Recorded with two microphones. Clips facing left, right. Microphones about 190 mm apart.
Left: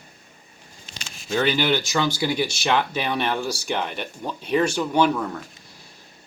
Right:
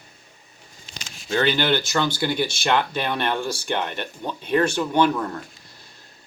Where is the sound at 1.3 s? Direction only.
5° left (ahead or behind).